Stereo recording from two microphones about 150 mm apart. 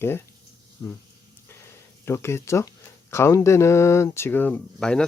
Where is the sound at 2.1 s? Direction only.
15° left (ahead or behind).